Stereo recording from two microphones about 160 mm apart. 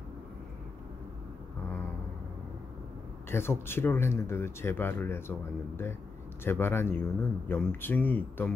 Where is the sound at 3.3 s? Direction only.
15° left (ahead or behind).